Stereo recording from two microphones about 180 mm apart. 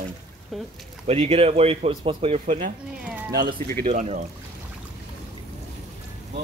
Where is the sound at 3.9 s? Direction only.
40° right (ahead or behind).